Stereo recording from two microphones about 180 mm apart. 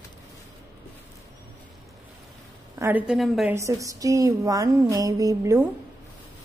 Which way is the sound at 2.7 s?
10° right (ahead or behind).